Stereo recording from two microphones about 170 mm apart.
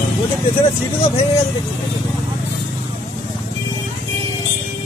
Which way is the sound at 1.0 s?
35° left (ahead or behind).